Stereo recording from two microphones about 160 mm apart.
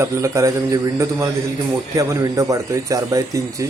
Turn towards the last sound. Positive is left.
turn(degrees=-20)  # may be behind; listen again after turning